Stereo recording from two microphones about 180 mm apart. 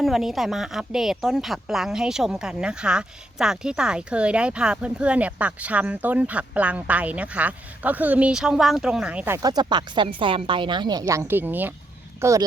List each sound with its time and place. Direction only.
0.0 s a woman's voice: centre (ahead or behind); by 12.5 s 15° right (ahead or behind)